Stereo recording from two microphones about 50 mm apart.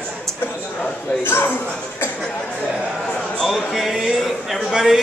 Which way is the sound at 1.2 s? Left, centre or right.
Left.